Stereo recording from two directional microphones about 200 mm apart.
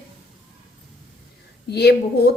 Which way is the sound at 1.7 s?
55° left (ahead or behind).